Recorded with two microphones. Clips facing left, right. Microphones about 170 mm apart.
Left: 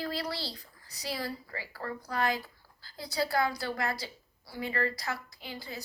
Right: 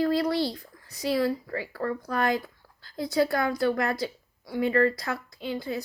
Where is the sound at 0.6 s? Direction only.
55° right (ahead or behind).